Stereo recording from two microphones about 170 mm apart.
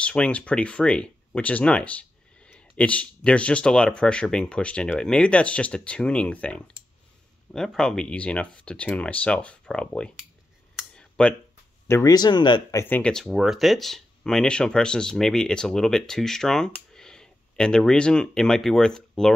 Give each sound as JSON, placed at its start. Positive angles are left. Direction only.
{"t": 0.0, "sound": "speech", "side_deg": 5}
{"t": 10.8, "sound": "a sound", "side_deg": 5}
{"t": 11.9, "sound": "speech", "side_deg": 20}
{"t": 12.8, "sound": "speech", "side_deg": 10}